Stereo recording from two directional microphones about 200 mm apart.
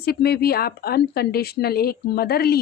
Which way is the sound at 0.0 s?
50° left (ahead or behind).